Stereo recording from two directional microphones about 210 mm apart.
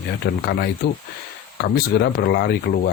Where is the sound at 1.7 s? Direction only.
45° left (ahead or behind).